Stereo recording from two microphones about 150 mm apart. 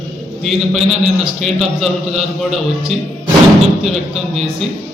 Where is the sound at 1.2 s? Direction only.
Centre (ahead or behind).